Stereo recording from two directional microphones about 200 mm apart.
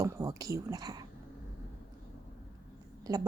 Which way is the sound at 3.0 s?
20° right (ahead or behind).